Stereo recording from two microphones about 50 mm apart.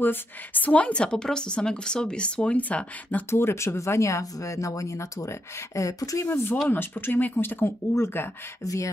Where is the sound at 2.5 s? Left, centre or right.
Left.